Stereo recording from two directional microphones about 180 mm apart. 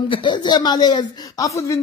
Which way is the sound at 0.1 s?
25° left (ahead or behind).